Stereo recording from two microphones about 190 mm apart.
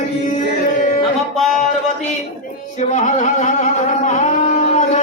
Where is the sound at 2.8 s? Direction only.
35° left (ahead or behind).